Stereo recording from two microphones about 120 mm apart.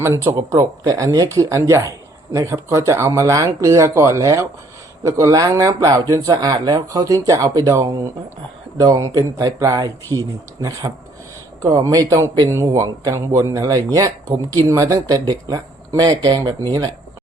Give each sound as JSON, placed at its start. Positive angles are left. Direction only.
{"t": 0.0, "sound": "speech", "side_deg": -25}